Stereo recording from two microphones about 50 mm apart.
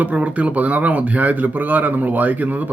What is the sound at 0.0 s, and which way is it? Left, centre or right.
Speech, right.